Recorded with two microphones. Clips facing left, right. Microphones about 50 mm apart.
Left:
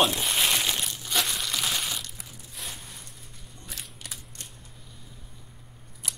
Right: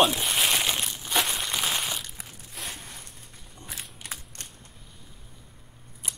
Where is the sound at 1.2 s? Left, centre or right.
Right.